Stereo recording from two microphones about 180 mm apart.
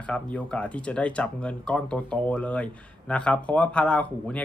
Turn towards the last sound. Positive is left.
turn(degrees=5)  # may be behind; listen again after turning